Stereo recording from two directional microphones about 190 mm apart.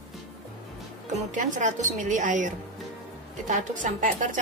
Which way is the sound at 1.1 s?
40° right (ahead or behind).